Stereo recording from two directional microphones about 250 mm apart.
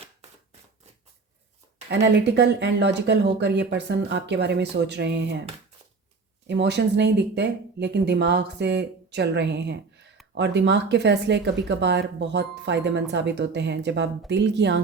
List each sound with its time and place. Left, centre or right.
1.9 s speech: right
6.5 s speech: right